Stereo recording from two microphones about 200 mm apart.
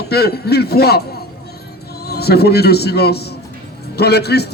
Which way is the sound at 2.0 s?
50° left (ahead or behind).